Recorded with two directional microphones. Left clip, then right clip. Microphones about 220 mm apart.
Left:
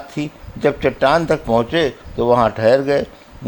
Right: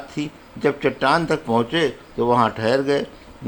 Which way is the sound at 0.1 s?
30° left (ahead or behind).